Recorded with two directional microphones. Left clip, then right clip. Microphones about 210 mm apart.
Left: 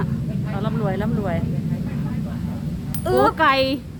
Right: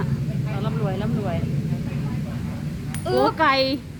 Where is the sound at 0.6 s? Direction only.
25° left (ahead or behind).